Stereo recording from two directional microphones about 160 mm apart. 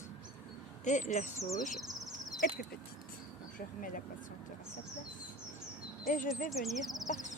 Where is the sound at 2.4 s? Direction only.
65° left (ahead or behind).